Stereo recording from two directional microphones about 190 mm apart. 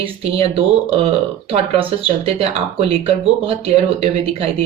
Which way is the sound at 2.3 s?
30° right (ahead or behind).